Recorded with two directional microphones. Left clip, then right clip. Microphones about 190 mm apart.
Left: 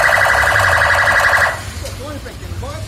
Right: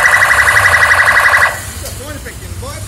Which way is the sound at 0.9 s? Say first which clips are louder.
Right 4 dB; 60° left (ahead or behind).